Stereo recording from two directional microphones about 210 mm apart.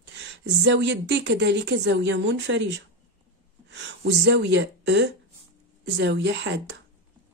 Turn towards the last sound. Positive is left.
turn(degrees=-60)  # may be behind; listen again after turning